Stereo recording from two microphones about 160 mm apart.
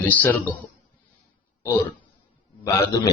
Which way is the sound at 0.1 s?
10° left (ahead or behind).